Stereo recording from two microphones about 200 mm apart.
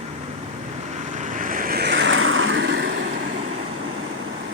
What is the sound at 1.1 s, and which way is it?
Vehicle, 40° right (ahead or behind).